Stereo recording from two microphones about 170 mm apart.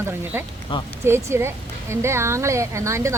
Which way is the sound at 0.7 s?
30° left (ahead or behind).